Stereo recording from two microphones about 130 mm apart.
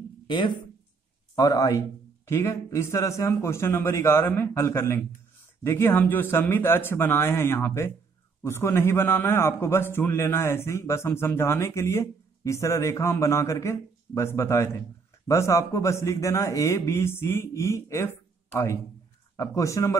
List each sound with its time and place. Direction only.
1.3 s a man's voice: 25° left (ahead or behind)